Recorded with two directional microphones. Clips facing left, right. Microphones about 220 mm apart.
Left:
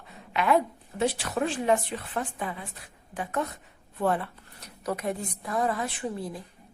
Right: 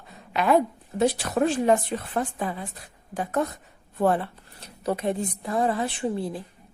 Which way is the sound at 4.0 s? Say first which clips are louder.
Right 4 dB; 30° right (ahead or behind).